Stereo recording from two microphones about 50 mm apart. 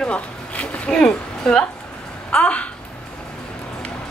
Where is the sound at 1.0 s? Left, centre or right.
Centre.